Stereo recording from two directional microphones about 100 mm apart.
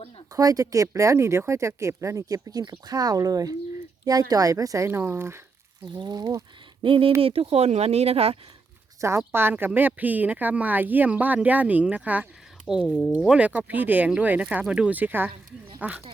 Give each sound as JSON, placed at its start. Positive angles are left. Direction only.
{"t": 0.3, "sound": "speech", "side_deg": -35}
{"t": 6.0, "sound": "speech", "side_deg": -45}
{"t": 6.8, "sound": "speech", "side_deg": -60}
{"t": 7.2, "sound": "speech", "side_deg": -75}
{"t": 9.0, "sound": "speech", "side_deg": -30}